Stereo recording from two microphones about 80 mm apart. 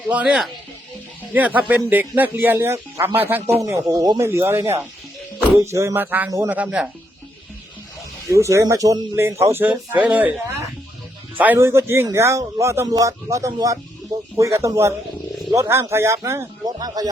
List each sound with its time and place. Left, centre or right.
0.1 s speech: centre
3.6 s speech: right
4.2 s speech: right
6.0 s speech: right
6.7 s speech: centre
8.3 s speech: right
9.6 s speech: centre
11.5 s speech: right
16.6 s speech: right